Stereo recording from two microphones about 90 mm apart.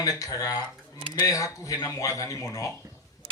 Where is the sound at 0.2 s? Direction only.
40° left (ahead or behind).